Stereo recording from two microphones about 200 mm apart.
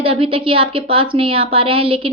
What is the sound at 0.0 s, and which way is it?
A woman's voice, 25° right (ahead or behind).